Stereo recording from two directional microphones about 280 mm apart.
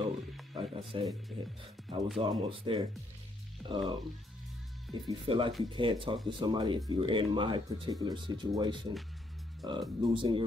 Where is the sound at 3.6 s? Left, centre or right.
Centre.